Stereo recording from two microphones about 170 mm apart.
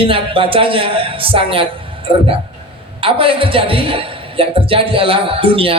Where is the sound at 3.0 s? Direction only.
30° right (ahead or behind).